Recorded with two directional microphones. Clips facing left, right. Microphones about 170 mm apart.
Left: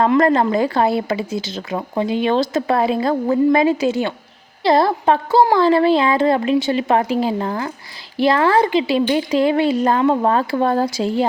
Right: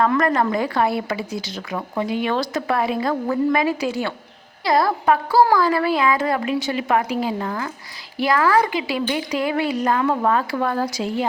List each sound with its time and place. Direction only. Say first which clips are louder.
0.0 s speech: left 4 dB; 25° left (ahead or behind)